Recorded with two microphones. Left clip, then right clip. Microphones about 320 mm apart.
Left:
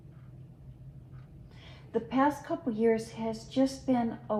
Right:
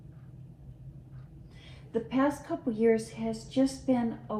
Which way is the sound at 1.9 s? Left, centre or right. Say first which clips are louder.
Left 1 dB; left.